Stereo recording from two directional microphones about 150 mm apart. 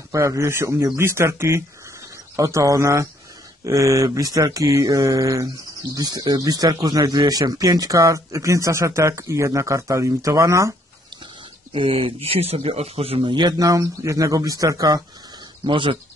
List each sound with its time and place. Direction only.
0.1 s mantra: 20° right (ahead or behind)
0.9 s speech: 15° right (ahead or behind)
2.3 s mantra: 20° right (ahead or behind)
11.7 s speech: 35° right (ahead or behind)
15.6 s speech: 35° right (ahead or behind)